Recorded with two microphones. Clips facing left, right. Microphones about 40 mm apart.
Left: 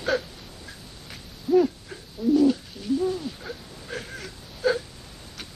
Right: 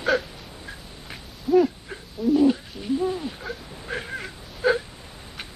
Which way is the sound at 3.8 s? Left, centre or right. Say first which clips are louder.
Right 4 dB; right.